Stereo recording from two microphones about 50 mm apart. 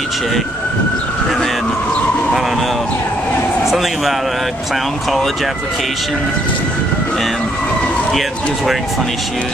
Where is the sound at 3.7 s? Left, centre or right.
Centre.